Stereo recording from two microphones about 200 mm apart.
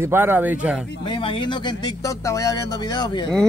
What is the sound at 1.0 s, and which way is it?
Speech, 25° left (ahead or behind).